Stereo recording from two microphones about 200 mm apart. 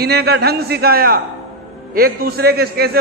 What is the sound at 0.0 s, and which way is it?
A man's voice, 55° right (ahead or behind).